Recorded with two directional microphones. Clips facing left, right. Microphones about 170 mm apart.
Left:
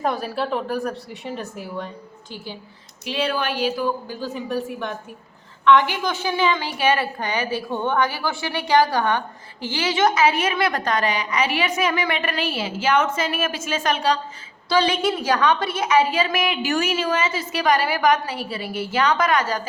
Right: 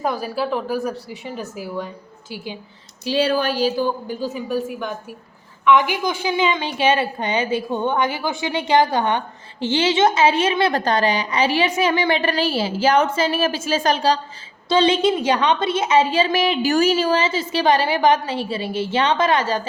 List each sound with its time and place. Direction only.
0.0 s speech: centre (ahead or behind)
2.3 s a woman's voice: 15° right (ahead or behind)
3.0 s a woman's voice: 35° right (ahead or behind); by 4.3 s 20° right (ahead or behind)
4.4 s a woman's voice: centre (ahead or behind); by 19.6 s 30° right (ahead or behind)